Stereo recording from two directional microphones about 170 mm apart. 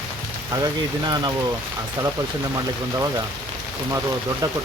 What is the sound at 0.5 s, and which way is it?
Speech, 25° right (ahead or behind).